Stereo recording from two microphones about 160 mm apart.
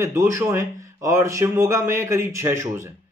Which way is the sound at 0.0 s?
15° right (ahead or behind).